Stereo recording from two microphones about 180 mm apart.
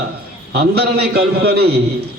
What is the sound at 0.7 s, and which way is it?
Speech, 60° right (ahead or behind).